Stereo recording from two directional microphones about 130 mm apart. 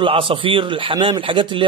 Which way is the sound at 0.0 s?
45° right (ahead or behind).